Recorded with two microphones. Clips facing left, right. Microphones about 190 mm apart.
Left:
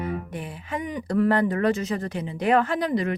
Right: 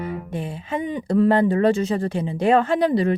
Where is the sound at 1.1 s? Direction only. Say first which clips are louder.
Right 4 dB; 25° right (ahead or behind).